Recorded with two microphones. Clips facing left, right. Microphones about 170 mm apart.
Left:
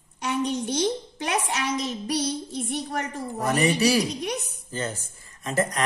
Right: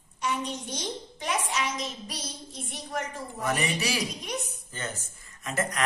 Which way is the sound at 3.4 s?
35° left (ahead or behind).